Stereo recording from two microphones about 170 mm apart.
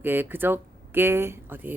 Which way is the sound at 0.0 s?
10° right (ahead or behind).